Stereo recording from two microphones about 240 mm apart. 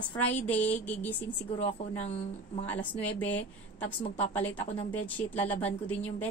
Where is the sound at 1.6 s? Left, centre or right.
Left.